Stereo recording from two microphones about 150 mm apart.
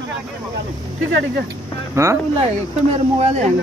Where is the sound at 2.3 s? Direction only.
45° right (ahead or behind).